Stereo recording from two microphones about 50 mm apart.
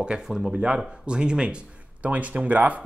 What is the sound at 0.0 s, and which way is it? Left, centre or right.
Speech, centre.